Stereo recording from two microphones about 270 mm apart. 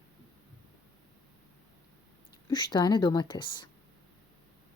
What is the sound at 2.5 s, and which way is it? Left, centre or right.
Speech, centre.